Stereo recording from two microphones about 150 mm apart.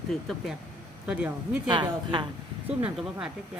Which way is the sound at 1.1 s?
5° right (ahead or behind).